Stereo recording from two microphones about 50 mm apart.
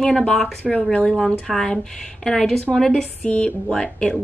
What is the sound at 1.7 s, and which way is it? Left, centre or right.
A woman's voice, centre.